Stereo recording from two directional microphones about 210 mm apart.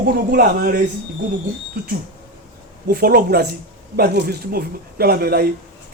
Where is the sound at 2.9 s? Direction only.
45° right (ahead or behind).